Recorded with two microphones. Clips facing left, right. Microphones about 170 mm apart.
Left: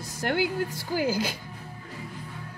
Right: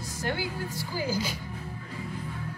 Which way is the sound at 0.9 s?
65° left (ahead or behind).